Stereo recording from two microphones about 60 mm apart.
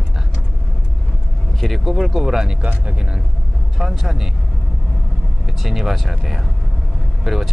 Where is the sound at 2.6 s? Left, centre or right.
Right.